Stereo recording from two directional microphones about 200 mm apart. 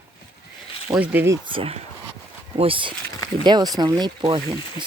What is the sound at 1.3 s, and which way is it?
Speech, 25° right (ahead or behind).